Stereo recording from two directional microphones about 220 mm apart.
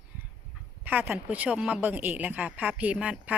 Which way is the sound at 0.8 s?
10° right (ahead or behind).